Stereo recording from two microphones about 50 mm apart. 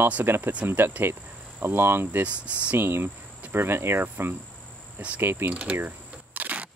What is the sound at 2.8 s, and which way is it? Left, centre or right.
Cricket, right.